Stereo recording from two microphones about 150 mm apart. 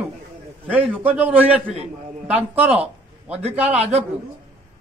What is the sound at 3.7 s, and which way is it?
Speech, 45° right (ahead or behind).